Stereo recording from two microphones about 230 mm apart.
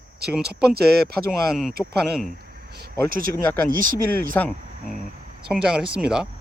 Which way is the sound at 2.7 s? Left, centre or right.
Right.